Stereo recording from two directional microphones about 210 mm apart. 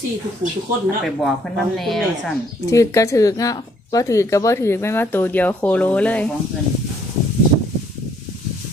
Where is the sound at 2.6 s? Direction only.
15° left (ahead or behind).